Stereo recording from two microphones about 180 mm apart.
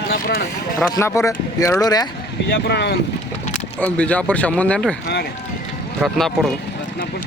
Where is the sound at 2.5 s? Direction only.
65° left (ahead or behind).